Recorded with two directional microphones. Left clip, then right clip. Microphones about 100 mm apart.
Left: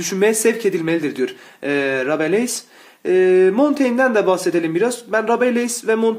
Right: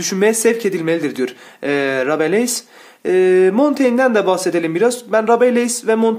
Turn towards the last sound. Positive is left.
turn(degrees=-35)  # may be behind; listen again after turning